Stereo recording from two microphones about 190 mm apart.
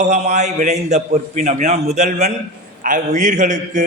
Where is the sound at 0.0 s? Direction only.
35° right (ahead or behind).